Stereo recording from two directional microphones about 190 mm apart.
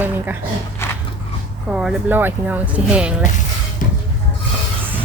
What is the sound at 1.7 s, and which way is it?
Speech, 5° right (ahead or behind).